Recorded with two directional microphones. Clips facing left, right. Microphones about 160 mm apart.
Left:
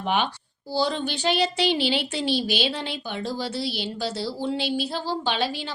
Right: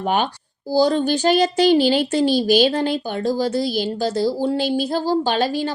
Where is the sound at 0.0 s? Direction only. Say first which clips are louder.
Right 4 dB; 45° right (ahead or behind).